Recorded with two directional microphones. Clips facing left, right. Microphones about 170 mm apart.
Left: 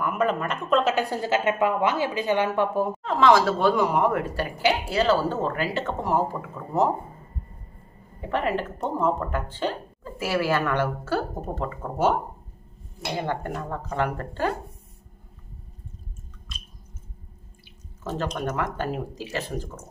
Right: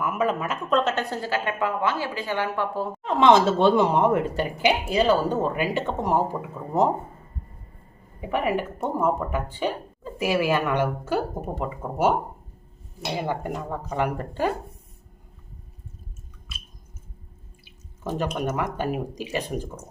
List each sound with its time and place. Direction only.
0.0 s speech: 5° right (ahead or behind); by 2.9 s 20° left (ahead or behind)
3.0 s speech: 20° right (ahead or behind)
8.2 s speech: 10° right (ahead or behind)
13.1 s speech: 10° right (ahead or behind)
18.0 s speech: 15° right (ahead or behind)